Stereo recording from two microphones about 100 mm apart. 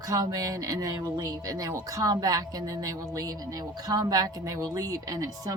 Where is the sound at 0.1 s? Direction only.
40° right (ahead or behind).